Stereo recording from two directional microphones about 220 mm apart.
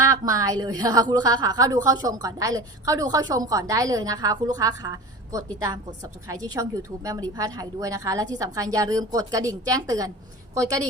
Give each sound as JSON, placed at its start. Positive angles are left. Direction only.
{"t": 0.0, "sound": "a woman's voice", "side_deg": -15}